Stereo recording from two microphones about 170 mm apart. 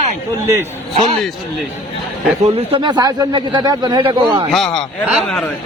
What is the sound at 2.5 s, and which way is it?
Speech, 30° right (ahead or behind).